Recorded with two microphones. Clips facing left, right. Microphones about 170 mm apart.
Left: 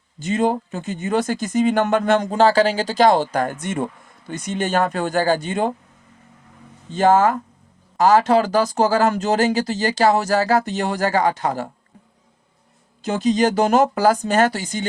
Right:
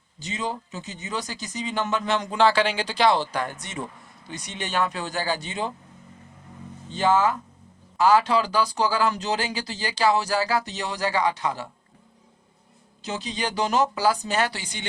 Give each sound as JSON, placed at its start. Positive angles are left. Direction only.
{"t": 0.2, "sound": "speech", "side_deg": 50}
{"t": 6.9, "sound": "speech", "side_deg": 50}
{"t": 13.0, "sound": "speech", "side_deg": 50}